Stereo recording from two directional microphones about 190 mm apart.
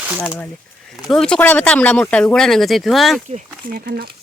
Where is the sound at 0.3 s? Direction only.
10° left (ahead or behind).